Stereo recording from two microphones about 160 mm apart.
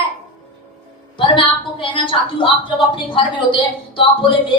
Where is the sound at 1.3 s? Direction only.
30° left (ahead or behind).